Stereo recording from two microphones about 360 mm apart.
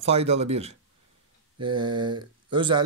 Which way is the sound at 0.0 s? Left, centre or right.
Centre.